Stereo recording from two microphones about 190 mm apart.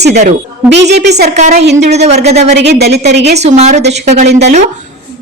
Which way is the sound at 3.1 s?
65° right (ahead or behind).